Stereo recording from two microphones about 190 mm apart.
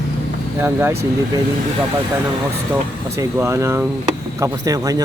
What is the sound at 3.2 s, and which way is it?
Speech, 15° right (ahead or behind).